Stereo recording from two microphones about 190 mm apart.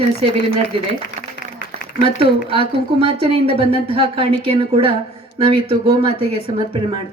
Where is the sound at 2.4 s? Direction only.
30° right (ahead or behind).